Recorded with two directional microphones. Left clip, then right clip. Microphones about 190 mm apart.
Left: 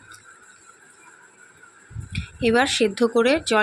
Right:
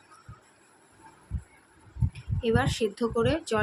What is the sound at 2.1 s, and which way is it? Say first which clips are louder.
Speech: left 7 dB; 20° left (ahead or behind).